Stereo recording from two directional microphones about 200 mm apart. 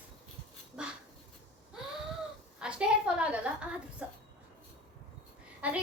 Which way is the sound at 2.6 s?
5° right (ahead or behind).